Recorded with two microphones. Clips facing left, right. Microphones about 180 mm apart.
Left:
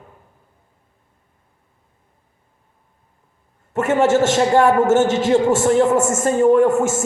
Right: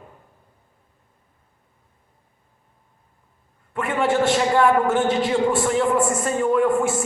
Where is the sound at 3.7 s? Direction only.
45° left (ahead or behind).